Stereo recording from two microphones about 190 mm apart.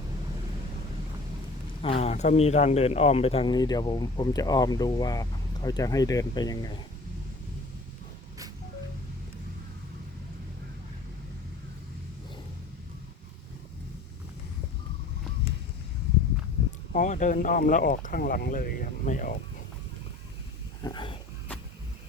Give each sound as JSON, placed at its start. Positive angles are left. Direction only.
{"t": 1.8, "sound": "speech", "side_deg": 30}
{"t": 16.9, "sound": "speech", "side_deg": 40}
{"t": 20.8, "sound": "speech", "side_deg": 25}